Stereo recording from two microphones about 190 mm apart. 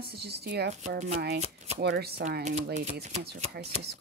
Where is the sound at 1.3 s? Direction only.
35° right (ahead or behind).